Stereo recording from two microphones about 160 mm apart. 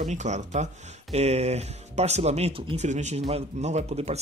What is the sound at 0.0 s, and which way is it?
Speech, 45° right (ahead or behind).